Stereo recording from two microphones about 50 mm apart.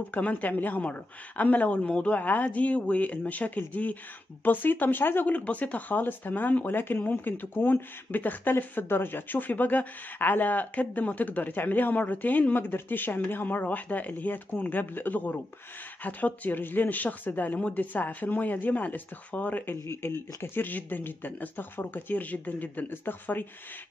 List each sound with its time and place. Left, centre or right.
0.1 s speech: left
5.3 s speech: left
20.0 s speech: left
20.5 s speech: left